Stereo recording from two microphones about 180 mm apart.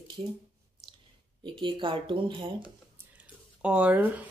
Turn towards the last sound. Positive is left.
turn(degrees=-10)  # may be behind; listen again after turning